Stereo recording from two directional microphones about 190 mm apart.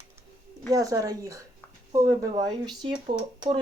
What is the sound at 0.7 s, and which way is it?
Speech, 20° right (ahead or behind).